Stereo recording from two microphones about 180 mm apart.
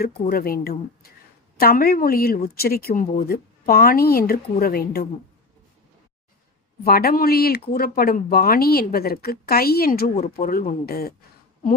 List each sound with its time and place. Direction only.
0.0 s speech: 55° left (ahead or behind)
6.8 s speech: 55° left (ahead or behind)